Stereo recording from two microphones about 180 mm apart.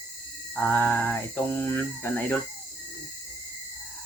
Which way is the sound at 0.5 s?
10° left (ahead or behind).